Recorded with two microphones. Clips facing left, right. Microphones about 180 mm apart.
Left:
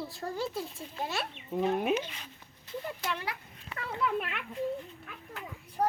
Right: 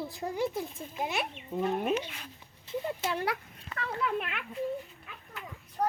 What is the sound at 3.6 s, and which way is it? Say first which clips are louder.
Speech: even; 10° left (ahead or behind).